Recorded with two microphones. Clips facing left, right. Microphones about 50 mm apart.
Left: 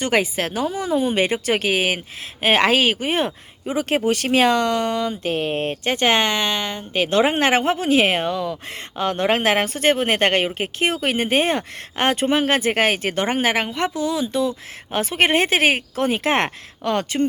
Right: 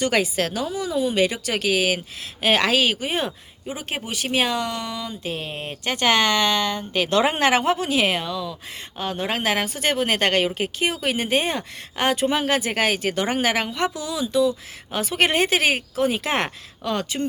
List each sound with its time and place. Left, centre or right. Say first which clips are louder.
0.0 s speech: left 1 dB; left
0.7 s speech: left 3 dB; left
3.7 s speech: left 10 dB; left
5.9 s speech: even; left
9.0 s speech: left 6 dB; left